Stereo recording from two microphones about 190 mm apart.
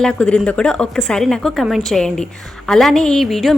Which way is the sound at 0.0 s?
5° left (ahead or behind).